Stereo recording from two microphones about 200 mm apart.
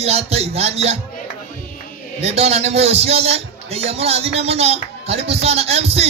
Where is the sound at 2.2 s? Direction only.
30° right (ahead or behind).